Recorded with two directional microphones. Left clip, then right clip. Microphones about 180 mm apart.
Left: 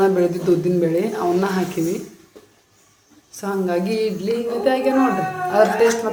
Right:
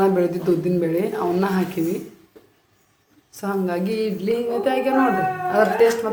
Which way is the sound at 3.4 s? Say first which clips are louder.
Left 2 dB; 5° right (ahead or behind).